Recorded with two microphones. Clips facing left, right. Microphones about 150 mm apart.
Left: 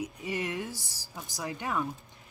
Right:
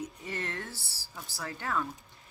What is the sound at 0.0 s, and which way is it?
A woman's voice, 10° left (ahead or behind).